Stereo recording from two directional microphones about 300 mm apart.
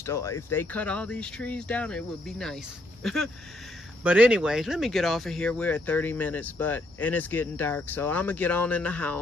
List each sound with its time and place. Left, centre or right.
0.0 s speech: centre